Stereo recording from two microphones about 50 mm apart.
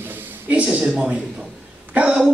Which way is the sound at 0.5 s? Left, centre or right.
Right.